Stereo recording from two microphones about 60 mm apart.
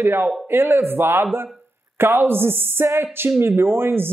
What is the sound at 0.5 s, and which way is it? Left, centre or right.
Speech, right.